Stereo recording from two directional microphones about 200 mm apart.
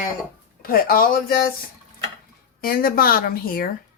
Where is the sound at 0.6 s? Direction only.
45° left (ahead or behind).